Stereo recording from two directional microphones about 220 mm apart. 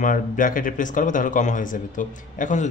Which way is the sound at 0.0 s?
40° left (ahead or behind).